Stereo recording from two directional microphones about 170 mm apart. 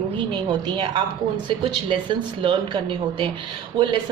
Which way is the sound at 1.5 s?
30° right (ahead or behind).